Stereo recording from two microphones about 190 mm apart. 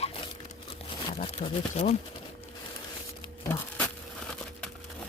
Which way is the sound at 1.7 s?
35° left (ahead or behind).